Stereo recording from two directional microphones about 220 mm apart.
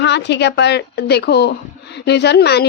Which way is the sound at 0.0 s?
50° left (ahead or behind).